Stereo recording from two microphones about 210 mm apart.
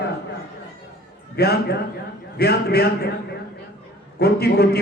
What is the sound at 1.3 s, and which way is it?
A man's voice, 50° left (ahead or behind).